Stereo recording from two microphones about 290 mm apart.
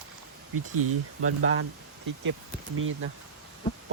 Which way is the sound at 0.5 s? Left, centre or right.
Right.